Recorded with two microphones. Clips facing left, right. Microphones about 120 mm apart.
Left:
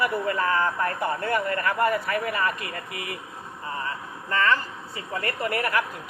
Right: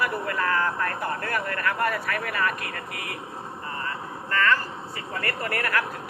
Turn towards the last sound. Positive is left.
turn(degrees=25)  # may be behind; listen again after turning